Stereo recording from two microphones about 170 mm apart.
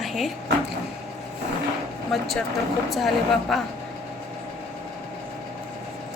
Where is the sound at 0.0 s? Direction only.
Centre (ahead or behind).